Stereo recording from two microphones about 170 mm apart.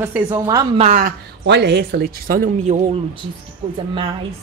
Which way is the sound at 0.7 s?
45° right (ahead or behind).